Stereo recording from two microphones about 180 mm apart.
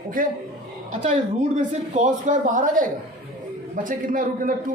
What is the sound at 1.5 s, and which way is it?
Speech, 40° right (ahead or behind).